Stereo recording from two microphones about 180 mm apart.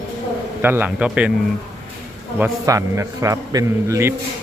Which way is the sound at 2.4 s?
15° right (ahead or behind).